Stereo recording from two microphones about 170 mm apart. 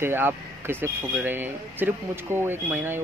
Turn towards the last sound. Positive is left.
turn(degrees=-10)  # may be behind; listen again after turning